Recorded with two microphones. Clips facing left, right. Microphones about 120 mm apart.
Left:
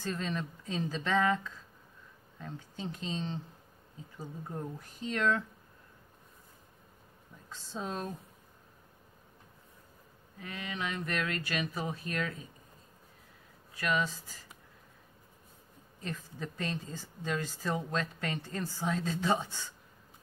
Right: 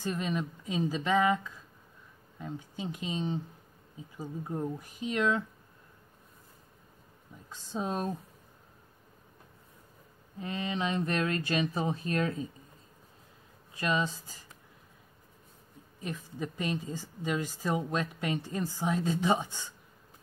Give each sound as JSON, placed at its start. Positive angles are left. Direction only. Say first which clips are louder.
{"t": 0.0, "sound": "speech", "louder": "right 3 dB", "side_deg": -15}
{"t": 7.4, "sound": "speech", "louder": "right 4 dB", "side_deg": -15}
{"t": 10.4, "sound": "speech", "louder": "right 6 dB", "side_deg": -25}
{"t": 13.7, "sound": "speech", "louder": "right 1 dB", "side_deg": -25}
{"t": 16.0, "sound": "speech", "louder": "right 3 dB", "side_deg": -15}